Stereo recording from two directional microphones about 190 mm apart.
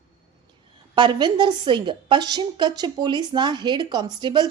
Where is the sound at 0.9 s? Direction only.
25° right (ahead or behind).